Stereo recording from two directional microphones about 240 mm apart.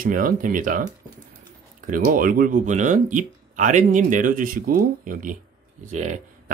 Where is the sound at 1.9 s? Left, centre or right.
Right.